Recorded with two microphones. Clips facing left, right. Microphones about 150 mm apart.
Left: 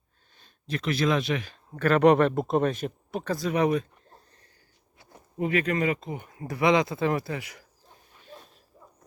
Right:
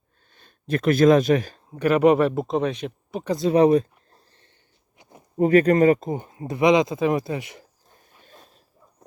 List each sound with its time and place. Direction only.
0.3 s speech: 55° right (ahead or behind)
1.7 s speech: 15° right (ahead or behind)
3.2 s speech: 25° right (ahead or behind)
4.9 s a sound: 20° right (ahead or behind)
5.4 s speech: 40° right (ahead or behind); by 7.6 s 25° right (ahead or behind)